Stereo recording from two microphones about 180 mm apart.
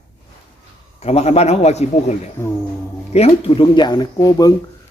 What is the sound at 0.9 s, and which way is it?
A man's voice, 35° left (ahead or behind).